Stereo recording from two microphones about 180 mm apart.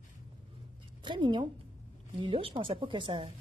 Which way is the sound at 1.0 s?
25° right (ahead or behind).